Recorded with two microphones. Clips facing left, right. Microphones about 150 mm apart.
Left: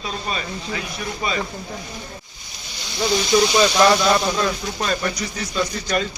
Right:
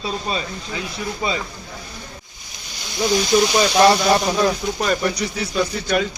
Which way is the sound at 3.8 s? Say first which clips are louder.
Right 4 dB; 30° right (ahead or behind).